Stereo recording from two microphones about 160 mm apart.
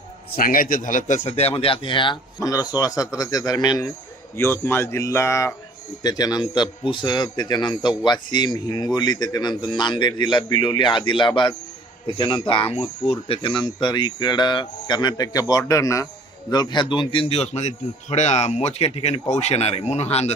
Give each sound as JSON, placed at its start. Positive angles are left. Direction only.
{"t": 0.3, "sound": "a man's voice", "side_deg": 60}